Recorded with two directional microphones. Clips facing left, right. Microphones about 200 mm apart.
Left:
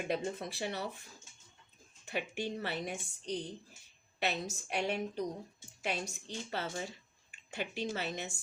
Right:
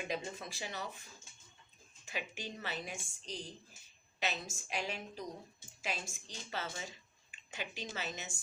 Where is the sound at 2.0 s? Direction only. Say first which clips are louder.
Left 6 dB; 60° left (ahead or behind).